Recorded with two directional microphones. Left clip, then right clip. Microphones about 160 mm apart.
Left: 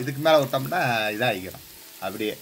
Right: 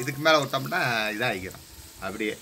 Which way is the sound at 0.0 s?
40° left (ahead or behind).